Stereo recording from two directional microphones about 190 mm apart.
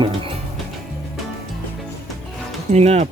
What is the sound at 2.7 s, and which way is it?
Speech, 35° right (ahead or behind).